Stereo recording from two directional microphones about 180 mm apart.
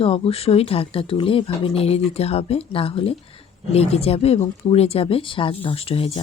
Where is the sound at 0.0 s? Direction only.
30° left (ahead or behind).